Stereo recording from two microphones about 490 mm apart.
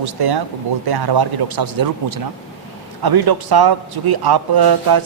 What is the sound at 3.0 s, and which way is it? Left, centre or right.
A man's voice, right.